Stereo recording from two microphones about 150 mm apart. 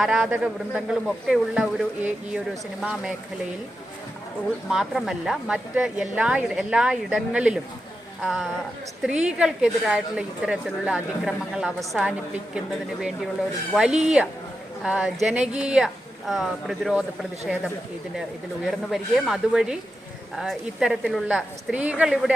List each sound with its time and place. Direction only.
0.0 s a woman's voice: centre (ahead or behind)
4.7 s a woman's voice: 5° right (ahead or behind)
18.6 s a woman's voice: centre (ahead or behind)